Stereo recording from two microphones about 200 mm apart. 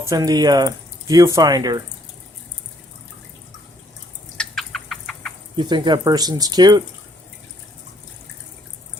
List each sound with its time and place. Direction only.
0.0 s speech: 15° right (ahead or behind)
4.4 s chicken: centre (ahead or behind)
5.5 s speech: 20° right (ahead or behind)